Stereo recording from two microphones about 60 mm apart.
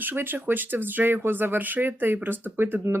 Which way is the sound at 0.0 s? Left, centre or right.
Right.